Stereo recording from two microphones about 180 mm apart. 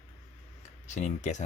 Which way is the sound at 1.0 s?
40° left (ahead or behind).